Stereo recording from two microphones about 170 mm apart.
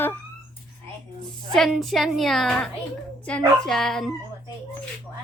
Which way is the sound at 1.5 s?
Centre (ahead or behind).